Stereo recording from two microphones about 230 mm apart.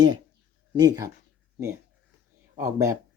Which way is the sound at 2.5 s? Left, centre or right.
Centre.